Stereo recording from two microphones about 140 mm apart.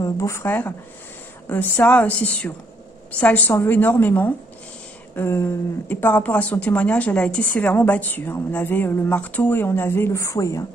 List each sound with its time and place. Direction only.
0.0 s a woman's voice: 20° left (ahead or behind)